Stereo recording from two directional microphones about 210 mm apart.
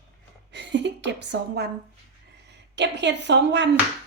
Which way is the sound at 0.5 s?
55° right (ahead or behind).